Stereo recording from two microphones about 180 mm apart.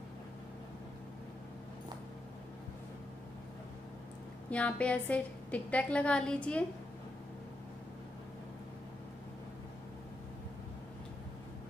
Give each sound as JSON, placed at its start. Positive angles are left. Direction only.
{"t": 4.5, "sound": "a woman's voice", "side_deg": 5}